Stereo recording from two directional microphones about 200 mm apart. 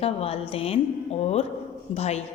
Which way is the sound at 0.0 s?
30° left (ahead or behind).